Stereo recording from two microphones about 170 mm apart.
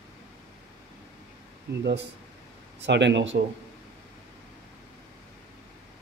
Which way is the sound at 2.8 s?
90° right.